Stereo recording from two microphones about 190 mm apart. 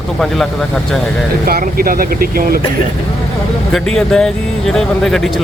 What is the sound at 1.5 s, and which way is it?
Speech, 50° right (ahead or behind).